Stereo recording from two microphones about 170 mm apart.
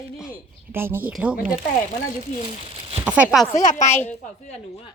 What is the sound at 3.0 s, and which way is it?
Speech, 5° right (ahead or behind).